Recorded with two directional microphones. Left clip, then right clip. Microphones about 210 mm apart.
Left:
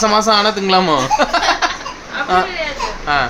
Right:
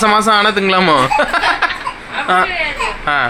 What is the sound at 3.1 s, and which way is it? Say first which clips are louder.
Speech: even; 20° right (ahead or behind).